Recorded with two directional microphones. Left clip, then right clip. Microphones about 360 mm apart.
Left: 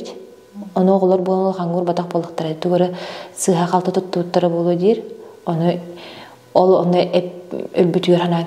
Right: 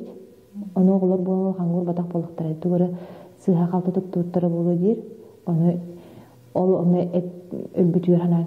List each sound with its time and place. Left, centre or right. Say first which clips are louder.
0.7 s a woman's voice: left 7 dB; centre
6.9 s a woman's voice: left 8 dB; centre